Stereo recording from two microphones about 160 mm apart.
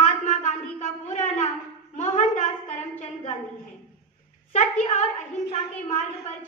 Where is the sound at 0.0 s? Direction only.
45° left (ahead or behind).